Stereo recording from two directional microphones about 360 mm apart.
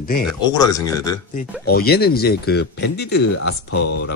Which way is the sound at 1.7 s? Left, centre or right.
Left.